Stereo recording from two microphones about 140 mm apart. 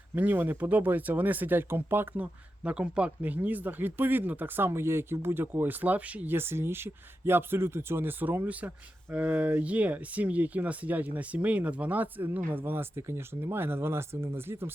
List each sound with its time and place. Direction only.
0.1 s speech: 15° right (ahead or behind)